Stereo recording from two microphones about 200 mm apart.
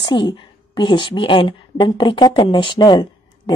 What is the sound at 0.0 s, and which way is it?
A woman's voice, 20° left (ahead or behind).